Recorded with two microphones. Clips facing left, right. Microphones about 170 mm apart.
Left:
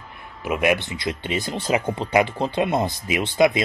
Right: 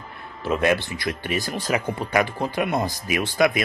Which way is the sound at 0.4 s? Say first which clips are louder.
Even; 15° left (ahead or behind).